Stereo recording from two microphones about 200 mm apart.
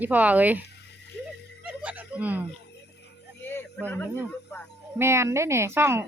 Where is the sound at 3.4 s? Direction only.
10° left (ahead or behind).